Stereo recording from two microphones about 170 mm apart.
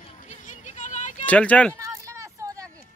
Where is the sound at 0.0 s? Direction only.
45° left (ahead or behind).